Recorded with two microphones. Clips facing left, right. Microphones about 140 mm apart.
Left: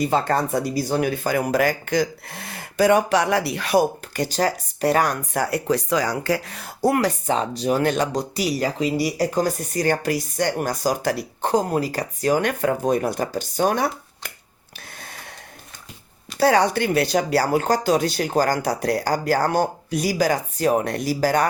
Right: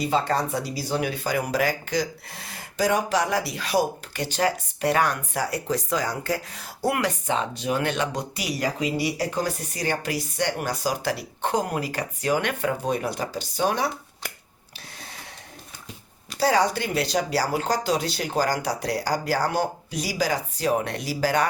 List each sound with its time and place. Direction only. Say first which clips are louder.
0.0 s speech: left 3 dB; 50° left (ahead or behind); by 6.7 s 70° left (ahead or behind)
6.8 s speech: left 5 dB; 35° left (ahead or behind)
16.4 s speech: left 4 dB; 60° left (ahead or behind)